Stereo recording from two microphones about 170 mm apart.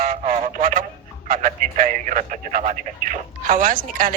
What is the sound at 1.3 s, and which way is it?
Speech, 50° right (ahead or behind).